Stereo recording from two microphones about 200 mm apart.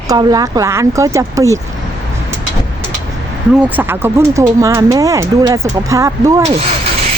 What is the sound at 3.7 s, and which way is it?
Speech, 10° right (ahead or behind).